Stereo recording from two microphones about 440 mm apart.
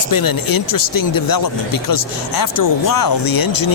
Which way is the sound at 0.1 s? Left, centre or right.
Left.